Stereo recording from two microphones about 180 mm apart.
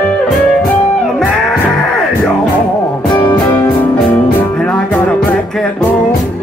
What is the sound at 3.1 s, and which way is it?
Music, 25° left (ahead or behind).